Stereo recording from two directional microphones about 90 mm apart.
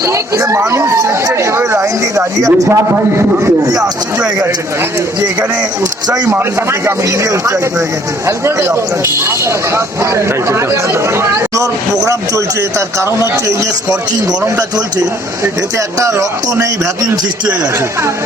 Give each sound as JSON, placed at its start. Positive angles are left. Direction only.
{"t": 0.1, "sound": "speech", "side_deg": -35}
{"t": 3.6, "sound": "speech", "side_deg": -45}
{"t": 9.7, "sound": "speech", "side_deg": -30}
{"t": 16.0, "sound": "speech", "side_deg": -35}